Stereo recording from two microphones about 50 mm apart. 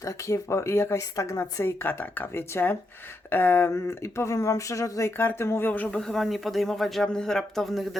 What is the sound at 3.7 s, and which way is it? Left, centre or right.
Speech, left.